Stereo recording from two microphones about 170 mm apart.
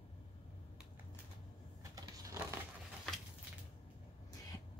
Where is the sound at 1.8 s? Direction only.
20° right (ahead or behind).